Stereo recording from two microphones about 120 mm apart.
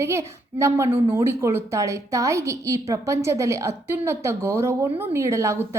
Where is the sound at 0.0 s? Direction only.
25° right (ahead or behind).